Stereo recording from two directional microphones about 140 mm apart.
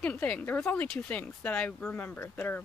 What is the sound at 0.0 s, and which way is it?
Speech, 10° left (ahead or behind).